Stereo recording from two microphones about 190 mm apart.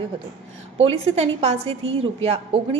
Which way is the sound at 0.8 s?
30° right (ahead or behind).